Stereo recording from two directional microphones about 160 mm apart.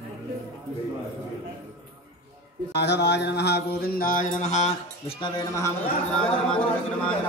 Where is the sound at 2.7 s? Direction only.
90° left.